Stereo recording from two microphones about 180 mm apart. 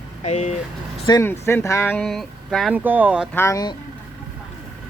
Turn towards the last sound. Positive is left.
turn(degrees=20)  # may be behind; listen again after turning